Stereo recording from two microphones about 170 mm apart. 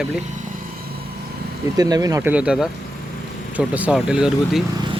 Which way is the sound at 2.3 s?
5° right (ahead or behind).